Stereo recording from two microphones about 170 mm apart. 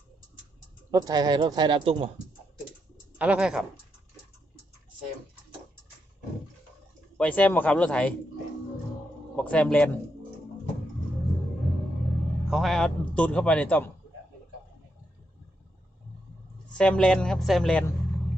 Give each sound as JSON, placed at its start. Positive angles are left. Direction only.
{"t": 0.9, "sound": "speech", "side_deg": -20}
{"t": 3.2, "sound": "speech", "side_deg": -5}
{"t": 7.2, "sound": "a man's voice", "side_deg": 10}
{"t": 9.3, "sound": "a man's voice", "side_deg": 5}
{"t": 12.5, "sound": "a man's voice", "side_deg": 0}
{"t": 16.7, "sound": "speech", "side_deg": 5}